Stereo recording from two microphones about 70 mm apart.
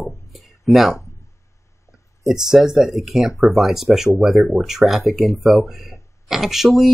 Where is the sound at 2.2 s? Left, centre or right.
Centre.